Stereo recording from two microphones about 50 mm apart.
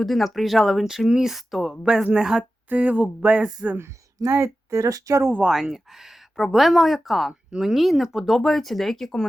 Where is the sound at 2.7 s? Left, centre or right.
Right.